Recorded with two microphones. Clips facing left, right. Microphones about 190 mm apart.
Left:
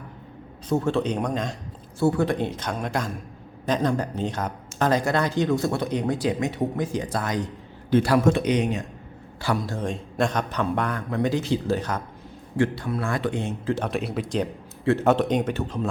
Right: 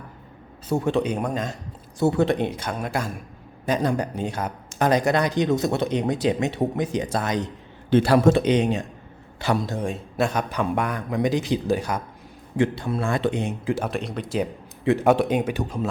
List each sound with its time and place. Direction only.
0.7 s a man's voice: 15° right (ahead or behind)
2.0 s a man's voice: 20° right (ahead or behind)
9.8 s a man's voice: 5° right (ahead or behind)
12.5 s a man's voice: 20° right (ahead or behind)